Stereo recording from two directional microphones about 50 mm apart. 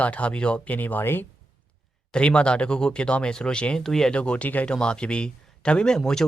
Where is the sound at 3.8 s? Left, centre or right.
Centre.